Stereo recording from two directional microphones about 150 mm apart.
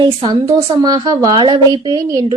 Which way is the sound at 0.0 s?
30° right (ahead or behind).